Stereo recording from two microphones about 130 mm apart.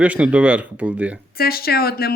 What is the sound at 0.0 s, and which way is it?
Speech, 10° right (ahead or behind).